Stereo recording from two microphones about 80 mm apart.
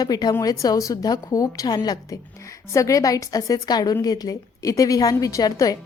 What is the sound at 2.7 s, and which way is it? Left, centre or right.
A woman's voice, left.